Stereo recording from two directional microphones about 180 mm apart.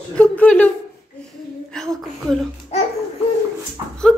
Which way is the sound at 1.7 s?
Centre (ahead or behind).